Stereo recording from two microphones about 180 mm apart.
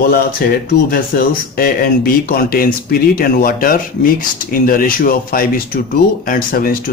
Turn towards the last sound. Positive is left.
turn(degrees=55)  # may be behind; listen again after turning